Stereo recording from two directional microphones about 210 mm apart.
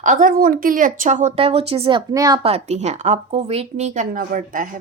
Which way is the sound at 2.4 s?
30° right (ahead or behind).